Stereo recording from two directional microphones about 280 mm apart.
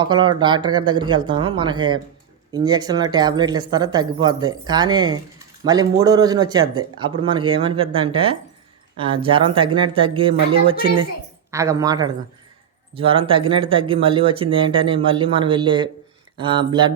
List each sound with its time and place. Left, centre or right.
0.0 s speech: centre